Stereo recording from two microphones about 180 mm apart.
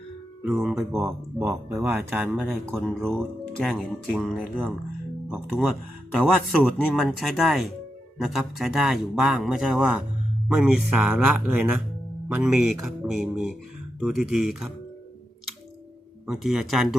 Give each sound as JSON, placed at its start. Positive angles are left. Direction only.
{"t": 0.7, "sound": "speech", "side_deg": -10}
{"t": 1.8, "sound": "a man's voice", "side_deg": -5}
{"t": 16.2, "sound": "a man's voice", "side_deg": 0}